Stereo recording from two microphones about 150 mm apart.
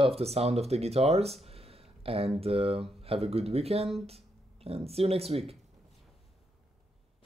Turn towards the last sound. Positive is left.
turn(degrees=-40)  # may be behind; listen again after turning